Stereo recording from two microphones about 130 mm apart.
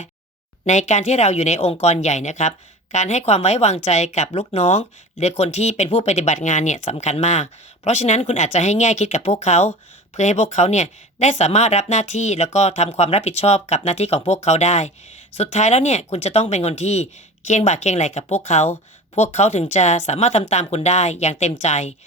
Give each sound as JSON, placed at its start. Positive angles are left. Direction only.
{"t": 0.6, "sound": "speech", "side_deg": 65}